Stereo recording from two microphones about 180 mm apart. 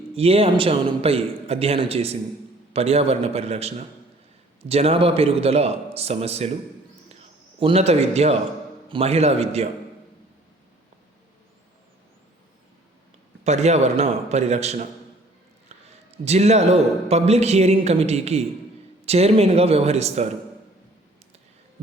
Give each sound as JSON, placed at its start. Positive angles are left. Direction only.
{"t": 0.1, "sound": "a man's voice", "side_deg": -35}
{"t": 7.6, "sound": "a man's voice", "side_deg": -35}
{"t": 13.4, "sound": "a man's voice", "side_deg": -40}
{"t": 15.7, "sound": "a sound", "side_deg": -35}
{"t": 16.1, "sound": "a man's voice", "side_deg": -35}